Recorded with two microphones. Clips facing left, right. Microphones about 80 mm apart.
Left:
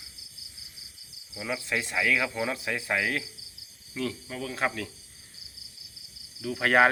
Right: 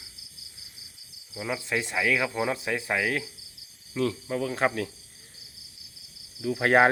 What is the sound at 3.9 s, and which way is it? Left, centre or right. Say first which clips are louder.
Speech: right 6 dB; right.